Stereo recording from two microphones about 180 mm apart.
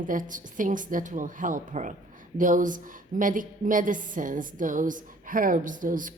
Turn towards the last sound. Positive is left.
turn(degrees=-45)  # may be behind; listen again after turning